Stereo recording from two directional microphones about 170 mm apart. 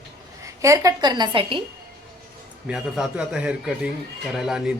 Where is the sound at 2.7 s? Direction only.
5° right (ahead or behind).